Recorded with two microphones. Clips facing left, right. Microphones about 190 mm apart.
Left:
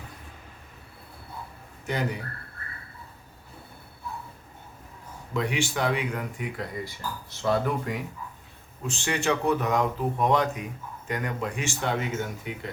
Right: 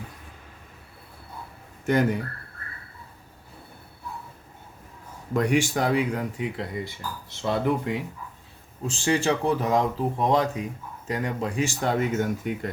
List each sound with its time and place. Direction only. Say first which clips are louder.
1.9 s speech: right 7 dB; 50° right (ahead or behind)
5.3 s speech: right 5 dB; 45° right (ahead or behind)